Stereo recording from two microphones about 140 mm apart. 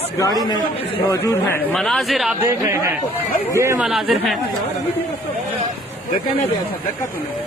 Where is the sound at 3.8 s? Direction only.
Centre (ahead or behind).